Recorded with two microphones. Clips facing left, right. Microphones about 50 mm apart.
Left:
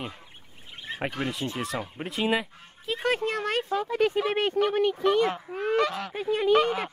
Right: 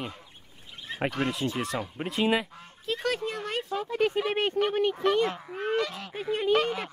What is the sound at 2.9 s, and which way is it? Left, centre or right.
Speech, left.